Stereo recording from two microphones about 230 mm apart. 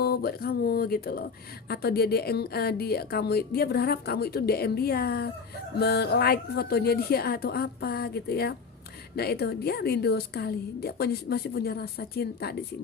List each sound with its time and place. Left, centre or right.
0.0 s speech: left